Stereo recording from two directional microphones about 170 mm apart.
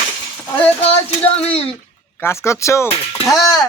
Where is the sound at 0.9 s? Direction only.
35° left (ahead or behind).